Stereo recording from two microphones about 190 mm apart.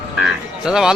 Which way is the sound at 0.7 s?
5° right (ahead or behind).